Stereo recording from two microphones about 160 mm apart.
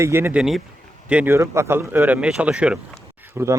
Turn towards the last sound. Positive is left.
turn(degrees=-15)  # may be behind; listen again after turning